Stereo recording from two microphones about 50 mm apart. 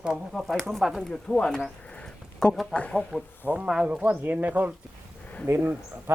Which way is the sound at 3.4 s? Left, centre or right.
Right.